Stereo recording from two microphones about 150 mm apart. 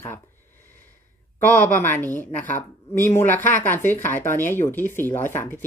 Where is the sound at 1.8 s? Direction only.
15° left (ahead or behind).